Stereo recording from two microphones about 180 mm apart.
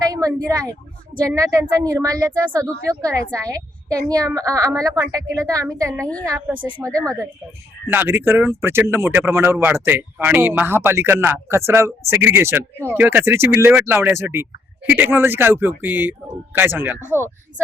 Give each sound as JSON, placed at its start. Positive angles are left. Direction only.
{"t": 0.0, "sound": "speech", "side_deg": -20}
{"t": 1.4, "sound": "a woman's voice", "side_deg": -20}
{"t": 6.1, "sound": "a woman's voice", "side_deg": 5}
{"t": 6.7, "sound": "a woman's voice", "side_deg": -20}